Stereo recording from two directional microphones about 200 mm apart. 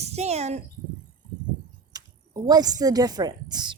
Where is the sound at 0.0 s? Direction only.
30° right (ahead or behind).